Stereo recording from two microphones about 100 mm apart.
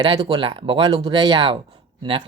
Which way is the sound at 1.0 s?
45° right (ahead or behind).